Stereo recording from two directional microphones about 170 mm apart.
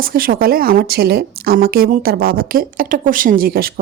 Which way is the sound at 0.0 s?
60° right (ahead or behind).